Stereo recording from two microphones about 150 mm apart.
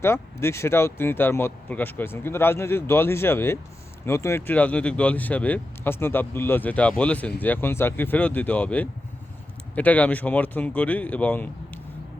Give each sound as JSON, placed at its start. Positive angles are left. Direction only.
{"t": 0.0, "sound": "speech", "side_deg": 15}